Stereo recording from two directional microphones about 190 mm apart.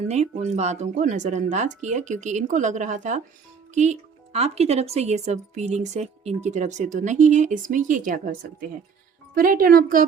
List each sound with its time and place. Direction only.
0.1 s speech: 35° right (ahead or behind)